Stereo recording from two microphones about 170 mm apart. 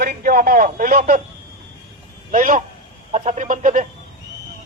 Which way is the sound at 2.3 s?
50° right (ahead or behind).